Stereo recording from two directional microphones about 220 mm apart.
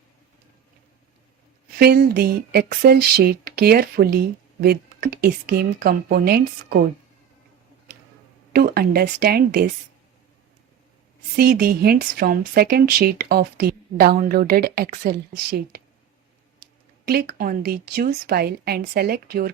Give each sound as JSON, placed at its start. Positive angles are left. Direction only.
{"t": 1.8, "sound": "speech", "side_deg": -45}
{"t": 8.5, "sound": "speech", "side_deg": -45}
{"t": 11.3, "sound": "speech", "side_deg": -45}
{"t": 17.1, "sound": "speech", "side_deg": -45}